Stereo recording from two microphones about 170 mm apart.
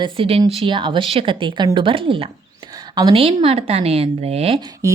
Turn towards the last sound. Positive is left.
turn(degrees=-35)  # may be behind; listen again after turning